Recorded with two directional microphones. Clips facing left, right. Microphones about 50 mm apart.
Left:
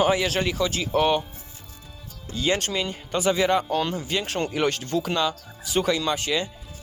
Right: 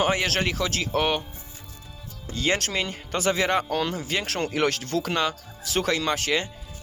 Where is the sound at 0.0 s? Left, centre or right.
Right.